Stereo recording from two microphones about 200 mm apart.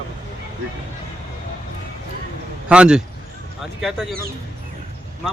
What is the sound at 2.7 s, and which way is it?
Speech, 5° right (ahead or behind).